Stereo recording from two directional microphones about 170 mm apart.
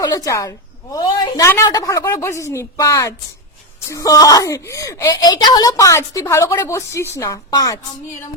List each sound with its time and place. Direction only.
0.0 s speech: 20° left (ahead or behind)